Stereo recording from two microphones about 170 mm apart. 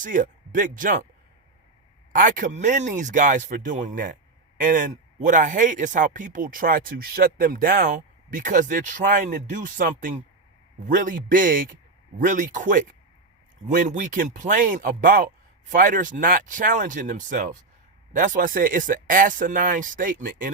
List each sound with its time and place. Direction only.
0.0 s speech: 50° right (ahead or behind)
2.1 s speech: 50° right (ahead or behind)